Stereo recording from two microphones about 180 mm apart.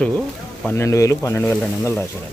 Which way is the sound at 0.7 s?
15° left (ahead or behind).